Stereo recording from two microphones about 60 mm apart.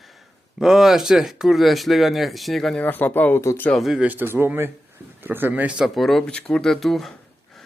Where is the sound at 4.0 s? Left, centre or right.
Right.